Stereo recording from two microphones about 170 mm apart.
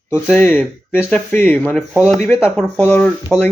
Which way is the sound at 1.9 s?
5° right (ahead or behind).